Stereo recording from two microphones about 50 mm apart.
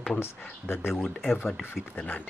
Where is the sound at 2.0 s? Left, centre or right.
Left.